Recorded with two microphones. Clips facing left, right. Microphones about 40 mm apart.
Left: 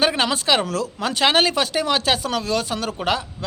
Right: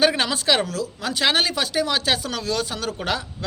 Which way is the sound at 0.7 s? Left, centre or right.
Left.